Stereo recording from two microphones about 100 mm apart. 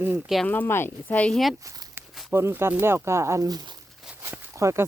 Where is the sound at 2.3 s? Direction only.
25° right (ahead or behind).